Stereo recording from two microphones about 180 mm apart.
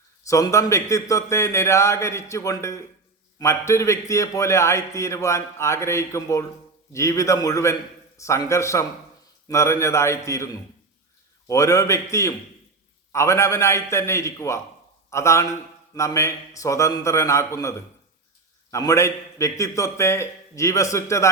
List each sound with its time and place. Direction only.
0.3 s a man's voice: 15° left (ahead or behind)